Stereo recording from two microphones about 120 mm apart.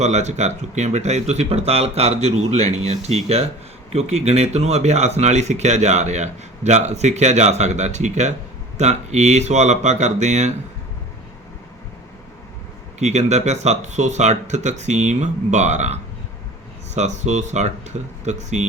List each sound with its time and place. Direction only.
0.0 s speech: 75° right (ahead or behind)
13.0 s speech: 70° right (ahead or behind)